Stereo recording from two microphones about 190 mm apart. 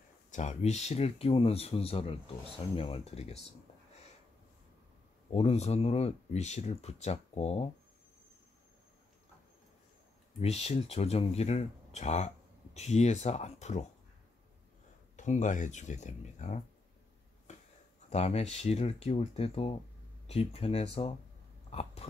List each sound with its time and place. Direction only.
0.3 s speech: 40° left (ahead or behind)
5.3 s speech: 35° left (ahead or behind)
10.4 s speech: 35° left (ahead or behind)
15.1 s speech: 40° left (ahead or behind)
17.5 s a sound: 40° left (ahead or behind)
18.1 s speech: 35° left (ahead or behind)